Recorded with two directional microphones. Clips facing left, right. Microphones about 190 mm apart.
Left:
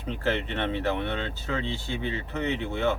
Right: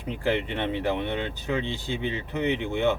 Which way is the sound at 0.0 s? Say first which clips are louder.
Right 2 dB; 15° right (ahead or behind).